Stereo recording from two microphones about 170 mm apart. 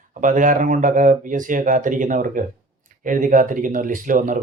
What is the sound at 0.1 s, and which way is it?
Speech, 50° right (ahead or behind).